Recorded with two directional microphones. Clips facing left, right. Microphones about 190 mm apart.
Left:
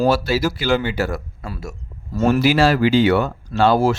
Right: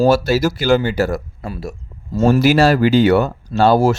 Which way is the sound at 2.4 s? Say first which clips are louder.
Right 2 dB; 45° right (ahead or behind).